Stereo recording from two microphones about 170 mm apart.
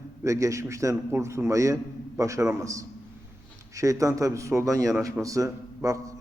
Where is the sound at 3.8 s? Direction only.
20° right (ahead or behind).